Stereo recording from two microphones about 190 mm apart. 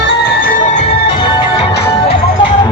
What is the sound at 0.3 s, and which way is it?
Music, 45° left (ahead or behind).